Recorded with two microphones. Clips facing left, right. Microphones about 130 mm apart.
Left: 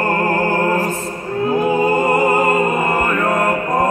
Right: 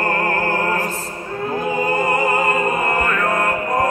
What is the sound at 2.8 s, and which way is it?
Mantra, 15° left (ahead or behind).